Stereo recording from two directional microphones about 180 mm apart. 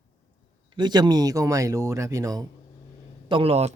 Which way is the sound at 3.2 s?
30° right (ahead or behind).